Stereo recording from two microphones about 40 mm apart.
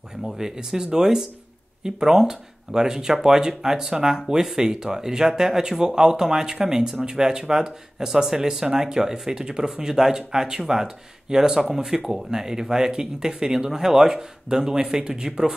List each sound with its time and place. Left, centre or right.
0.2 s speech: centre